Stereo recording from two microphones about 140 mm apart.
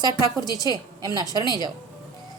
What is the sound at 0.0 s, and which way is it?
A woman's voice, 25° right (ahead or behind).